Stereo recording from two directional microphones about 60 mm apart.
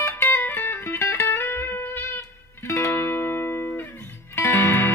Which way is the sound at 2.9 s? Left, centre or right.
Left.